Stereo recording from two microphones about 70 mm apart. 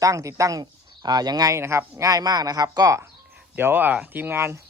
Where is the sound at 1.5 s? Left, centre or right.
Right.